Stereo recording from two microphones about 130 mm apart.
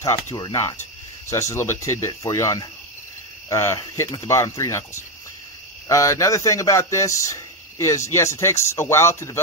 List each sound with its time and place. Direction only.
0.0 s a man's voice: 25° left (ahead or behind)